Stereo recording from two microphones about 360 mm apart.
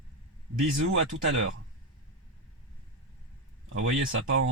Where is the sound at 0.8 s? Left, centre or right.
Right.